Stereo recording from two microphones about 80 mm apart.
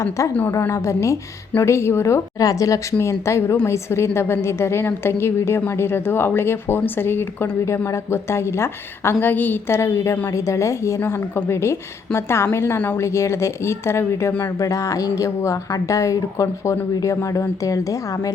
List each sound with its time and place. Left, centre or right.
0.2 s a woman's voice: left
7.6 s a woman's voice: left